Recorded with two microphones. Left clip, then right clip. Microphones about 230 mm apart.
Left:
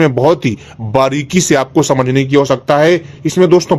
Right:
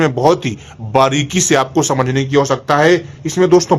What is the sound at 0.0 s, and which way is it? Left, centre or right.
A man's voice, left.